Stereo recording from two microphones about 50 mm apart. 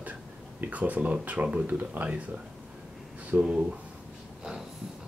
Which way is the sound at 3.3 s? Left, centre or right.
Right.